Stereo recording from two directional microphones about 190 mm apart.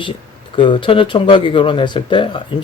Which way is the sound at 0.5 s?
25° left (ahead or behind).